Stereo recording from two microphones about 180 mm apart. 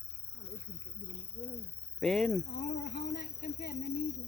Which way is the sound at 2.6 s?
65° left (ahead or behind).